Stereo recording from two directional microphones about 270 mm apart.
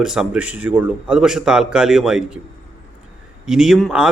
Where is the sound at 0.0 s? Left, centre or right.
Centre.